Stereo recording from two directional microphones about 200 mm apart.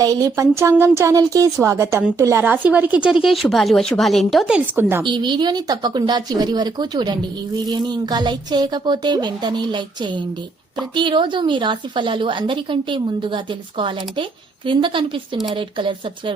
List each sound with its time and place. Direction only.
0.0 s speech: 20° right (ahead or behind)
5.0 s a woman's voice: 25° right (ahead or behind)